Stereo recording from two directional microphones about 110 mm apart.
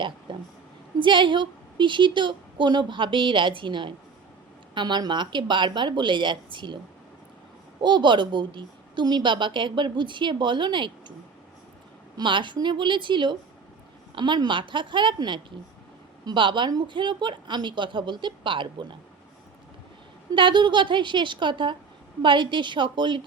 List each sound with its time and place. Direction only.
0.3 s a woman's voice: 50° right (ahead or behind)
7.8 s a woman's voice: 45° right (ahead or behind)
12.1 s a woman's voice: 45° right (ahead or behind)
20.3 s a woman's voice: 45° right (ahead or behind)